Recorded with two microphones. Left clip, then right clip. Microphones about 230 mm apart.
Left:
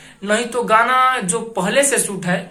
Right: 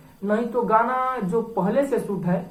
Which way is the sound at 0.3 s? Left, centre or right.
Left.